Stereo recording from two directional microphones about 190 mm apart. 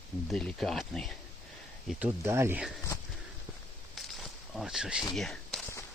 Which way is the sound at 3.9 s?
Centre (ahead or behind).